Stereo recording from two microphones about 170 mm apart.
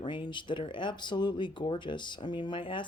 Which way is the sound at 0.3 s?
30° left (ahead or behind).